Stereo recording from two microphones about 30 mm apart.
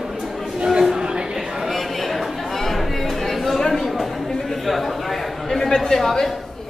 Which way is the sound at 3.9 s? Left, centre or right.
Centre.